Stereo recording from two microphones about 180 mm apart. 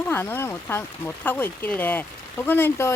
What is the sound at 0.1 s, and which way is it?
Speech, 10° left (ahead or behind).